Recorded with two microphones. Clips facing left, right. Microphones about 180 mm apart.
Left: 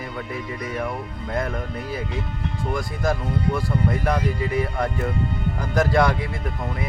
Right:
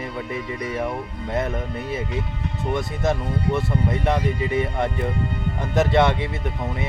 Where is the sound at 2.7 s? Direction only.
25° right (ahead or behind).